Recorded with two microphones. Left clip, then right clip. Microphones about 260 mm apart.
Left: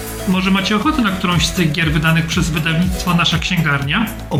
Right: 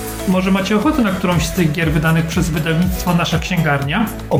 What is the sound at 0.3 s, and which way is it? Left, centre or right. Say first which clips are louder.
Speech: even; centre.